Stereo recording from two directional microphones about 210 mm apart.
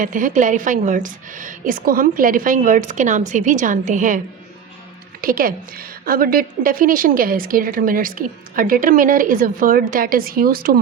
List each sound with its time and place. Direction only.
0.0 s a woman's voice: 40° right (ahead or behind)
5.2 s a woman's voice: 45° right (ahead or behind)